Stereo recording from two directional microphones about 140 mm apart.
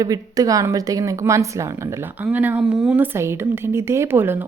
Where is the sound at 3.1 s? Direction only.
20° right (ahead or behind).